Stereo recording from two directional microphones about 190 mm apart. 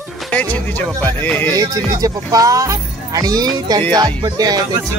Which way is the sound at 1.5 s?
20° right (ahead or behind).